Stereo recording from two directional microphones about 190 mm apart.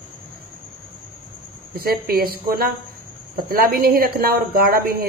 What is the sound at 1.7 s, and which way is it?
A woman's voice, 55° right (ahead or behind).